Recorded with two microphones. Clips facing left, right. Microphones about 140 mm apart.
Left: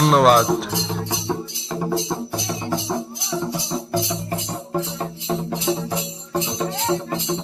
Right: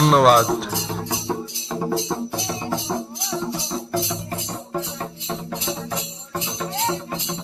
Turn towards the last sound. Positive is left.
turn(degrees=20)  # may be behind; listen again after turning